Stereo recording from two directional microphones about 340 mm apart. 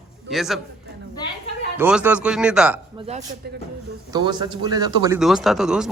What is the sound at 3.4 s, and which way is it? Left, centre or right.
Speech, right.